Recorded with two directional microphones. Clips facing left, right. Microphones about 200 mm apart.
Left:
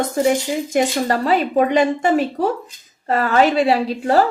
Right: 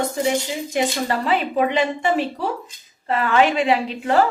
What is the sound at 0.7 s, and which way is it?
A woman's voice, 40° left (ahead or behind).